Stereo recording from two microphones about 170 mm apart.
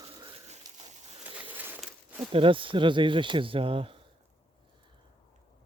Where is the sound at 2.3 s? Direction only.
30° right (ahead or behind).